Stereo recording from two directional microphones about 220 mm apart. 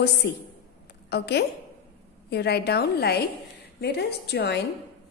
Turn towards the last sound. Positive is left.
turn(degrees=50)  # may be behind; listen again after turning